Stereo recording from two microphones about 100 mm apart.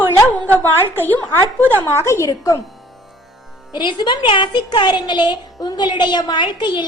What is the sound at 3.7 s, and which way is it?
A woman's voice, 50° left (ahead or behind).